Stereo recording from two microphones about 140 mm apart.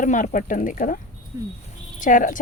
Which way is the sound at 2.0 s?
70° left (ahead or behind).